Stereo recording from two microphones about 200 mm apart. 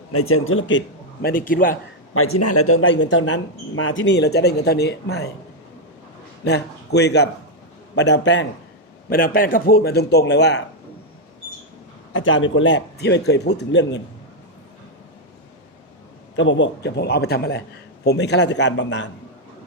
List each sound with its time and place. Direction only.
0.1 s speech: 90° left
1.2 s a man's voice: 45° left (ahead or behind)
2.1 s speech: 90° left; by 5.3 s 55° left (ahead or behind)
6.4 s a man's voice: 55° left (ahead or behind)
9.0 s a man's voice: 45° left (ahead or behind)
12.1 s speech: 75° left (ahead or behind); by 14.0 s 60° left (ahead or behind)
16.3 s speech: 70° left (ahead or behind)